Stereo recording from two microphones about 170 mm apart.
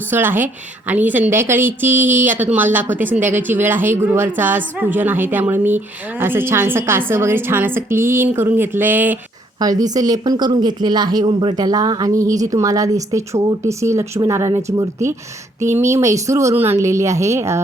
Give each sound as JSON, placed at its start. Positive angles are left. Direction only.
{"t": 0.1, "sound": "a woman's voice", "side_deg": -10}
{"t": 9.6, "sound": "a woman's voice", "side_deg": -20}